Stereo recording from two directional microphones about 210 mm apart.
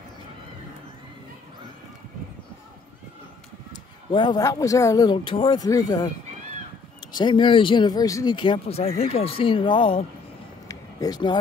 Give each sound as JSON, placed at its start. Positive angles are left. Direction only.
{"t": 4.1, "sound": "speech", "side_deg": 20}
{"t": 7.1, "sound": "speech", "side_deg": 20}
{"t": 10.7, "sound": "a sound", "side_deg": 15}